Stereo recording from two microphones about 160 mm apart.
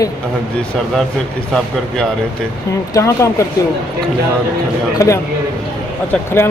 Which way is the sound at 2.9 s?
20° left (ahead or behind).